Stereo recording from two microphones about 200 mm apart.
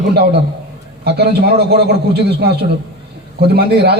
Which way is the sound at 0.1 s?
55° right (ahead or behind).